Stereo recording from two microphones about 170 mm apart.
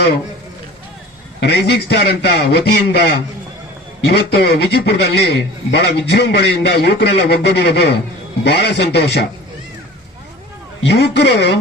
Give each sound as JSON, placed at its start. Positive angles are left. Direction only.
{"t": 1.4, "sound": "a man's voice", "side_deg": 80}
{"t": 10.8, "sound": "a man's voice", "side_deg": 90}